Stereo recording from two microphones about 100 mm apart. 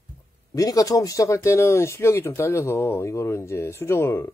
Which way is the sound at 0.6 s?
35° left (ahead or behind).